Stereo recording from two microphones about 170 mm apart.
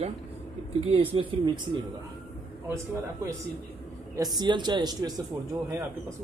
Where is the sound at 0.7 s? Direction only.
35° right (ahead or behind).